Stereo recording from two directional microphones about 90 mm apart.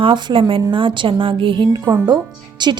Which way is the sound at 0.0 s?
70° right (ahead or behind).